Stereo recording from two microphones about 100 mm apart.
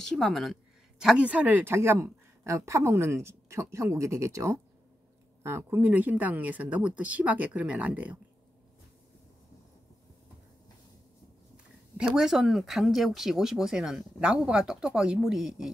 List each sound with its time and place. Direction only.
0.0 s speech: 5° left (ahead or behind); by 8.2 s 15° right (ahead or behind)
11.5 s speech: 5° right (ahead or behind)